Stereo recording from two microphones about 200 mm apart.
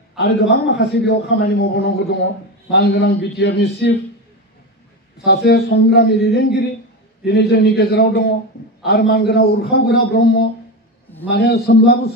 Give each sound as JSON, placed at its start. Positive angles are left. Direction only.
{"t": 0.2, "sound": "a man's voice", "side_deg": 55}
{"t": 5.2, "sound": "a man's voice", "side_deg": 50}